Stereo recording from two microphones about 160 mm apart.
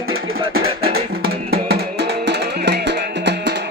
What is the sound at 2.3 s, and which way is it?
Music, 90° right.